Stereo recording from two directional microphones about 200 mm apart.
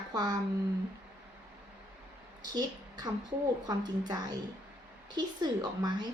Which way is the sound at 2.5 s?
20° right (ahead or behind).